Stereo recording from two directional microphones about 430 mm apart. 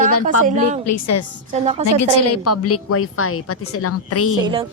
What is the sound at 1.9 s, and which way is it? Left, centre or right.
A woman's voice, left.